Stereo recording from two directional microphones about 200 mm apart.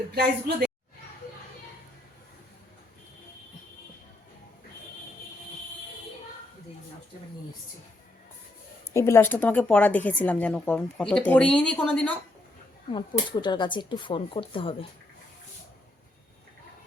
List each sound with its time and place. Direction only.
0.1 s a woman's voice: 55° right (ahead or behind)
8.9 s speech: 15° left (ahead or behind)
12.9 s speech: 25° left (ahead or behind)